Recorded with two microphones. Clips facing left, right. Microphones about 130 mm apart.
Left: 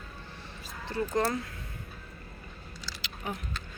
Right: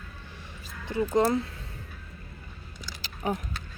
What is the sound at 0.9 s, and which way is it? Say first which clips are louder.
Speech: right 5 dB; 20° right (ahead or behind).